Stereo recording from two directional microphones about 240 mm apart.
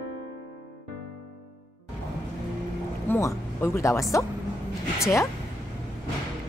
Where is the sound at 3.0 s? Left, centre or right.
Centre.